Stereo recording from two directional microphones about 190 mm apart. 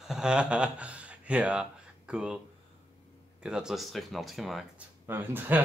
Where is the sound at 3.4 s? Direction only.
5° right (ahead or behind).